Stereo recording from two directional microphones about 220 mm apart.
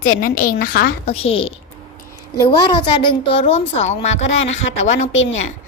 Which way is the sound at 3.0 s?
25° left (ahead or behind).